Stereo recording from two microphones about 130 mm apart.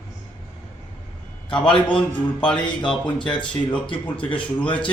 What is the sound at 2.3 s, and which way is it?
Speech, 10° left (ahead or behind).